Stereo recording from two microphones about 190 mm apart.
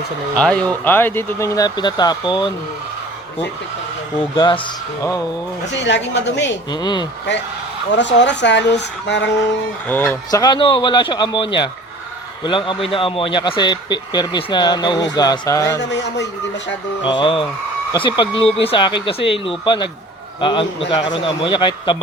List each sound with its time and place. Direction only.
0.3 s speech: 5° left (ahead or behind); by 2.5 s 25° left (ahead or behind)
4.4 s speech: 25° left (ahead or behind)
5.7 s speech: 70° left (ahead or behind)
6.7 s speech: 20° left (ahead or behind)
7.9 s speech: 70° left (ahead or behind)
9.8 s speech: 10° left (ahead or behind)
15.8 s speech: 65° left (ahead or behind)
17.0 s speech: 25° left (ahead or behind)